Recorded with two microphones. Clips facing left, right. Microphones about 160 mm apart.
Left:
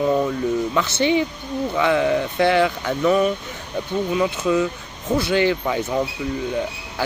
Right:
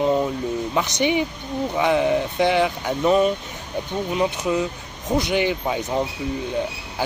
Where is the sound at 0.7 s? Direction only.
15° right (ahead or behind).